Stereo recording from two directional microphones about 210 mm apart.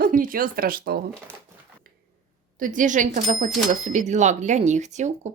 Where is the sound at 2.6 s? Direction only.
40° right (ahead or behind).